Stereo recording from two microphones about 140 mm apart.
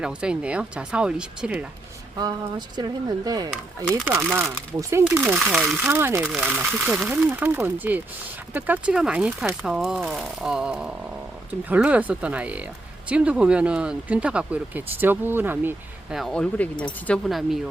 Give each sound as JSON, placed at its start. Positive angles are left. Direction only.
{"t": 0.0, "sound": "speech", "side_deg": -5}
{"t": 2.1, "sound": "speech", "side_deg": -30}
{"t": 5.9, "sound": "speech", "side_deg": -20}
{"t": 6.2, "sound": "speech", "side_deg": -5}
{"t": 16.1, "sound": "speech", "side_deg": 5}